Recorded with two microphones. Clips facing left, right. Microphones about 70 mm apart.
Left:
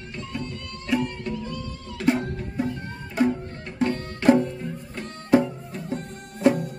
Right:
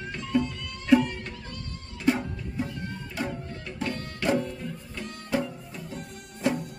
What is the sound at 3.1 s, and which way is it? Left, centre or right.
Music, left.